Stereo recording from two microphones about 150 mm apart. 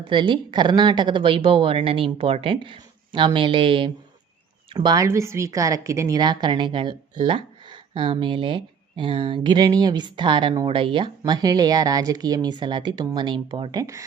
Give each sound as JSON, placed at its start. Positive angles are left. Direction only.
{"t": 0.0, "sound": "a woman's voice", "side_deg": -35}
{"t": 5.0, "sound": "a woman's voice", "side_deg": -20}